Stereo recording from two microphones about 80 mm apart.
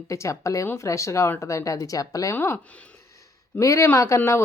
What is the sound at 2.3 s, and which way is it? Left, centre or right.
Speech, left.